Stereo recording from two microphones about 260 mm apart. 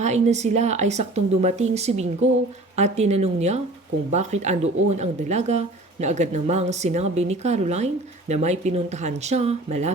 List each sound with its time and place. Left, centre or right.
0.0 s speech: right